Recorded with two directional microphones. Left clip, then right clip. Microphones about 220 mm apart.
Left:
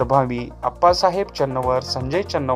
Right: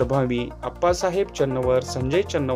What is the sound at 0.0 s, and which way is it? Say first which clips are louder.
Speech: left 4 dB; 5° right (ahead or behind).